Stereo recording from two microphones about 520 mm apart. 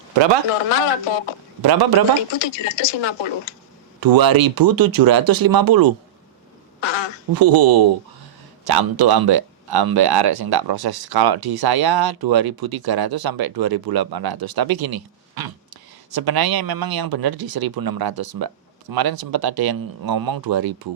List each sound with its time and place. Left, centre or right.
0.1 s a man's voice: right
0.7 s speech: left
1.6 s speech: right
2.3 s speech: left
4.0 s speech: right
6.7 s duck: left
7.3 s speech: right